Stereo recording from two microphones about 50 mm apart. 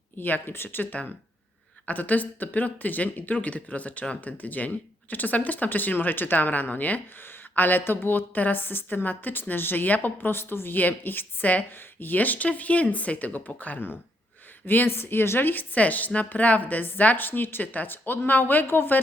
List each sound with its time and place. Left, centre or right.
0.2 s a woman's voice: left